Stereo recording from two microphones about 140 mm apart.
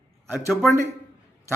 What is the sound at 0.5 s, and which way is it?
Speech, centre (ahead or behind).